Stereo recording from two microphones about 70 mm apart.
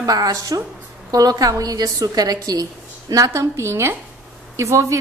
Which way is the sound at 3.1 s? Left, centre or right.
Right.